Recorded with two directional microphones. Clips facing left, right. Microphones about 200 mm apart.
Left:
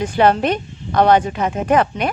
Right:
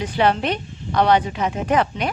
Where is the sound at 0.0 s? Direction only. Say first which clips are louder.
Left 4 dB; 50° left (ahead or behind).